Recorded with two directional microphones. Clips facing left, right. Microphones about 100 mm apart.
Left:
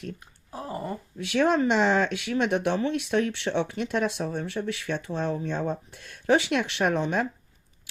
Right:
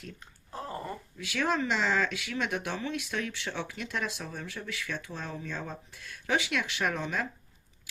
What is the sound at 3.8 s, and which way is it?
Speech, 40° left (ahead or behind).